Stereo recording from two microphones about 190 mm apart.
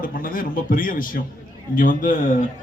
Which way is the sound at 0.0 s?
45° left (ahead or behind).